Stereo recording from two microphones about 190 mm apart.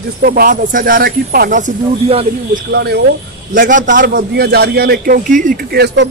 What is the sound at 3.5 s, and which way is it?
Speech, 45° right (ahead or behind).